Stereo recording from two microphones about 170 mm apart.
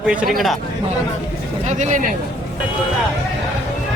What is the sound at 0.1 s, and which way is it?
Speech, 5° right (ahead or behind).